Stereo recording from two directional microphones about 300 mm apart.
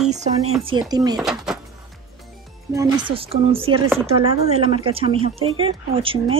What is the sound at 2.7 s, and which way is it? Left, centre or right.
Speech, centre.